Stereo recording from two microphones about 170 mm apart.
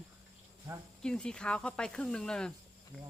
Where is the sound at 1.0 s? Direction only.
5° left (ahead or behind).